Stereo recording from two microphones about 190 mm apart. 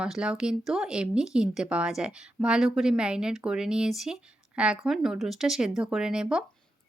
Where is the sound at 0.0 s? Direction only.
5° right (ahead or behind).